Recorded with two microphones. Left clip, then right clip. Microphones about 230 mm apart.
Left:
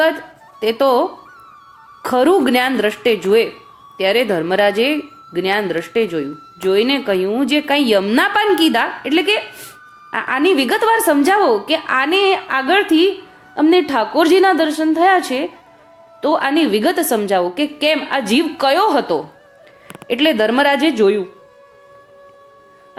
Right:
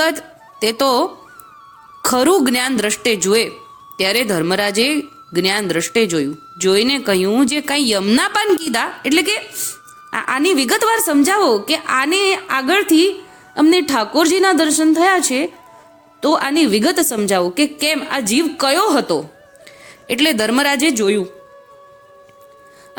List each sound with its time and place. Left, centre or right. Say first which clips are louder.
0.6 s speech: left 1 dB; right
2.0 s speech: left 1 dB; right